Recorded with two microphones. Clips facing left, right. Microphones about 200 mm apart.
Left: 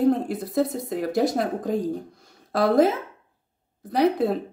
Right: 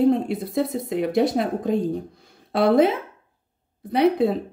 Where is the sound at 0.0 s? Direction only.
Centre (ahead or behind).